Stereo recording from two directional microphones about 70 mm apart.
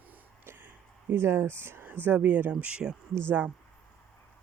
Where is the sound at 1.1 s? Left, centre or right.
Right; by 3.0 s centre.